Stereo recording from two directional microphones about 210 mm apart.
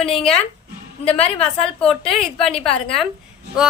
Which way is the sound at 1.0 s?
30° left (ahead or behind).